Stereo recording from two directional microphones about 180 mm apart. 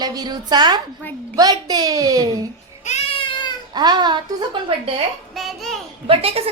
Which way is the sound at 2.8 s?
35° left (ahead or behind).